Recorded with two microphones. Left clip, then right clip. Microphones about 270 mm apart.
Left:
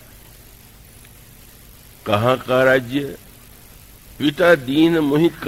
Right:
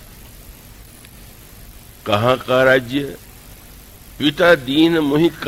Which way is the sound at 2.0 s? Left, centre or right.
Right.